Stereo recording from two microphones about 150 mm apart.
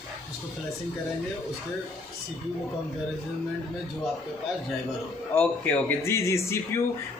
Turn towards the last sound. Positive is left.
turn(degrees=20)  # may be behind; listen again after turning